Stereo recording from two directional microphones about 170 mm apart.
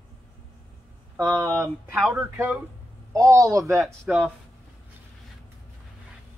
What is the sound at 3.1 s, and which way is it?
Speech, 20° right (ahead or behind).